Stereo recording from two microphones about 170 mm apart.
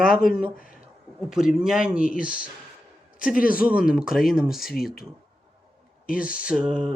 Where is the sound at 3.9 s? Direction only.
5° right (ahead or behind).